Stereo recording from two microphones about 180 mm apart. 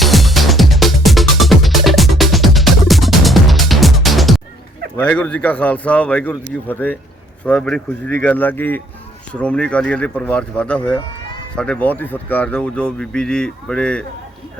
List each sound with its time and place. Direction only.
0.0 s music: centre (ahead or behind)
4.9 s speech: 10° left (ahead or behind)